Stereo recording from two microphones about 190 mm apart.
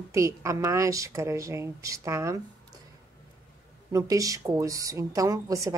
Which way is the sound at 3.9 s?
15° right (ahead or behind).